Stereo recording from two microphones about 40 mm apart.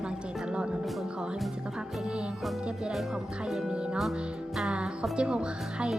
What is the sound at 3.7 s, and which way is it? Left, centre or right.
A woman's voice, right.